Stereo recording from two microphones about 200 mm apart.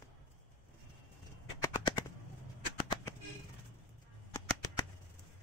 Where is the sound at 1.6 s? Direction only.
20° left (ahead or behind).